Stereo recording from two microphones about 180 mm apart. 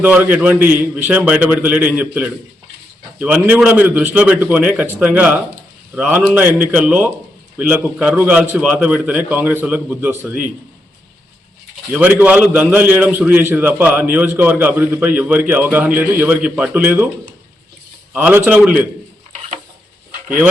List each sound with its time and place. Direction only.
0.0 s a man's voice: 10° right (ahead or behind)
11.9 s a man's voice: 10° right (ahead or behind)
18.1 s a man's voice: 10° right (ahead or behind)